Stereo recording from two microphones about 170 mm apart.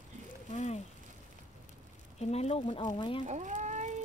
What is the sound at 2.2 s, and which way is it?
Speech, 40° left (ahead or behind).